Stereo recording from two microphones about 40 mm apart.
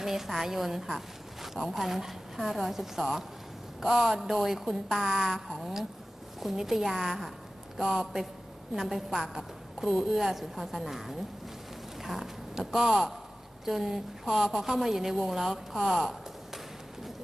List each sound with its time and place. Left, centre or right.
0.0 s a woman's voice: centre